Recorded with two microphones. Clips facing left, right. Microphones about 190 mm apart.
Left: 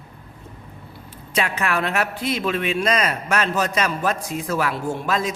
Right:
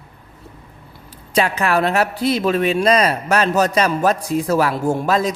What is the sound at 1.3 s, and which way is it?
A man's voice, 35° right (ahead or behind).